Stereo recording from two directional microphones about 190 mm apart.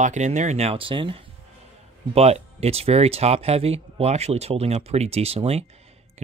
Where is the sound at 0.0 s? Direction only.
40° right (ahead or behind).